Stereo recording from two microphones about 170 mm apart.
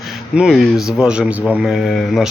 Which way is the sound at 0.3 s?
Centre (ahead or behind).